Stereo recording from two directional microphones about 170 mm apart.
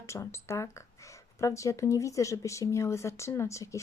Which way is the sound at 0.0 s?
15° left (ahead or behind).